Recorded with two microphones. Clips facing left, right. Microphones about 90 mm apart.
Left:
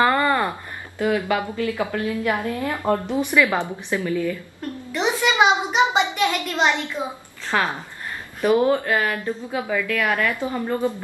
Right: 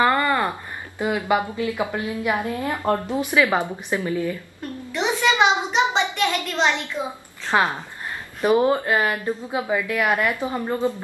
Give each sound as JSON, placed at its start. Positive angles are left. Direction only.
{"t": 0.0, "sound": "a sound", "side_deg": 15}
{"t": 0.4, "sound": "speech", "side_deg": -20}
{"t": 3.1, "sound": "a woman's voice", "side_deg": -5}
{"t": 3.3, "sound": "a woman's voice", "side_deg": -20}
{"t": 4.9, "sound": "a sound", "side_deg": 5}
{"t": 7.0, "sound": "a woman's voice", "side_deg": 0}
{"t": 7.5, "sound": "a woman's voice", "side_deg": -20}